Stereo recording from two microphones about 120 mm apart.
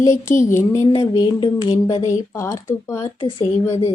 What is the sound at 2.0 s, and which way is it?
Speech, 25° left (ahead or behind).